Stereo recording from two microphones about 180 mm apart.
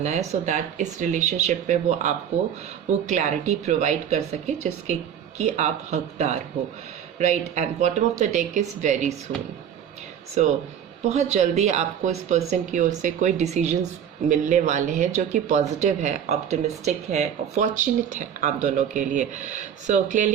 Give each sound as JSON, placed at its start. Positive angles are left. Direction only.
{"t": 0.0, "sound": "a woman's voice", "side_deg": -40}
{"t": 11.1, "sound": "speech", "side_deg": -40}